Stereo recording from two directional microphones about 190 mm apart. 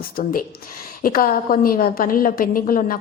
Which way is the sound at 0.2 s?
45° left (ahead or behind).